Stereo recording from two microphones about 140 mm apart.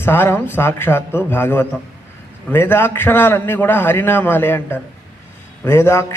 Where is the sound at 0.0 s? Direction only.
15° left (ahead or behind).